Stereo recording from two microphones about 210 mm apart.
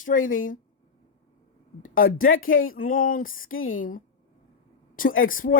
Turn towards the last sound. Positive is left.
turn(degrees=40)  # may be behind; listen again after turning